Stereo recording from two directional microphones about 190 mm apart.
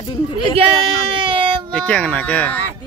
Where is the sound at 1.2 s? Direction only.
30° right (ahead or behind).